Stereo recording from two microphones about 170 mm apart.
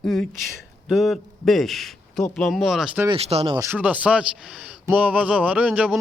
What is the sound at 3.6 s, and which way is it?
A man's voice, 10° right (ahead or behind).